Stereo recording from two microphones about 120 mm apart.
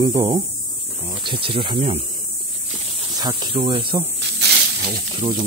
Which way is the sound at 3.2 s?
35° right (ahead or behind).